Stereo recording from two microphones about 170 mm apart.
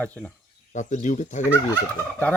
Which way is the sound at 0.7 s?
45° left (ahead or behind).